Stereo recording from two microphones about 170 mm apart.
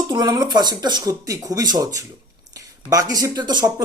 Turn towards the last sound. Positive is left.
turn(degrees=-25)  # may be behind; listen again after turning